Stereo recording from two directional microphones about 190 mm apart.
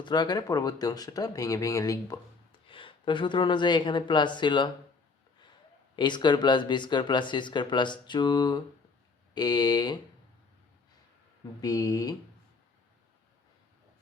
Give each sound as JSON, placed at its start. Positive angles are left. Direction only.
{"t": 0.0, "sound": "speech", "side_deg": 20}
{"t": 6.0, "sound": "speech", "side_deg": 25}
{"t": 11.6, "sound": "speech", "side_deg": 20}